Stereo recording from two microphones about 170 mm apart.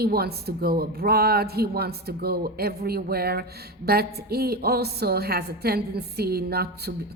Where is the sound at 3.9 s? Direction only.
65° right (ahead or behind).